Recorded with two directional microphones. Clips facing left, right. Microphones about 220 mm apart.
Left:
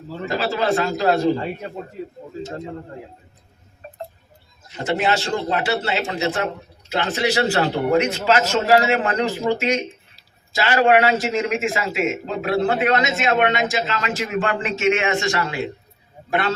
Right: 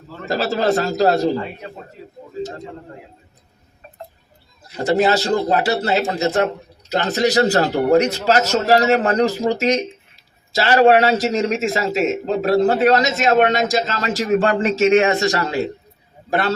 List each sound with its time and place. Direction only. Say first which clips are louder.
0.3 s a man's voice: right 3 dB; 40° right (ahead or behind)
4.8 s a man's voice: right 5 dB; 35° right (ahead or behind)